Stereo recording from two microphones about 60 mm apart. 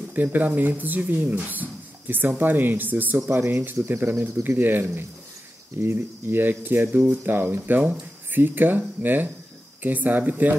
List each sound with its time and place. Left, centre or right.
0.1 s speech: right